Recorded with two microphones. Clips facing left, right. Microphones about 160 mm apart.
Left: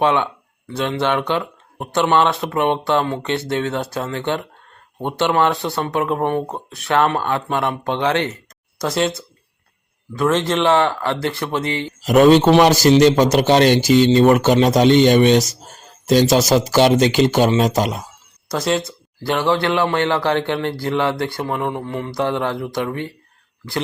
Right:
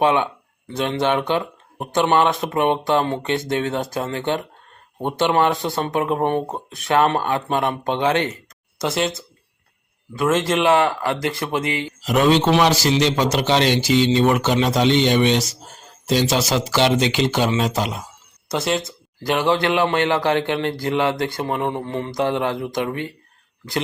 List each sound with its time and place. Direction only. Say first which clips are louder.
0.0 s a man's voice: even; 15° right (ahead or behind)
0.8 s mantra: even; 20° right (ahead or behind)
1.3 s a man's voice: even; 20° right (ahead or behind)
5.9 s mantra: even; 25° right (ahead or behind)
6.4 s a man's voice: left 1 dB; 15° right (ahead or behind)
7.9 s mantra: even; 20° right (ahead or behind)
8.8 s a man's voice: left 2 dB; centre (ahead or behind)
12.0 s speech: left 6 dB; 45° left (ahead or behind)
18.4 s speech: left 2 dB; centre (ahead or behind)
18.8 s a man's voice: left 3 dB; 20° right (ahead or behind)
21.3 s mantra: even; 25° right (ahead or behind)